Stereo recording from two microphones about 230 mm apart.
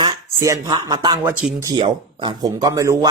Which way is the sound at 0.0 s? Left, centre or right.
Centre.